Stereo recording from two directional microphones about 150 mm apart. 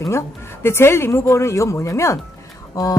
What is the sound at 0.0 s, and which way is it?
A woman's voice, 15° left (ahead or behind).